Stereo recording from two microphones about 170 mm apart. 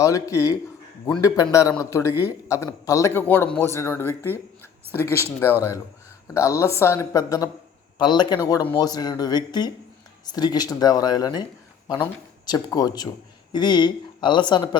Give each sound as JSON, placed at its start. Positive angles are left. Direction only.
{"t": 0.0, "sound": "speech", "side_deg": 20}
{"t": 12.5, "sound": "speech", "side_deg": 25}